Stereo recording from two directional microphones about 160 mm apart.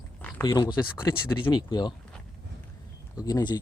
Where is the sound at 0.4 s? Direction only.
25° left (ahead or behind).